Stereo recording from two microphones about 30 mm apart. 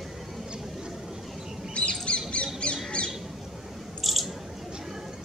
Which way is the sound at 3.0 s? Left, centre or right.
Left.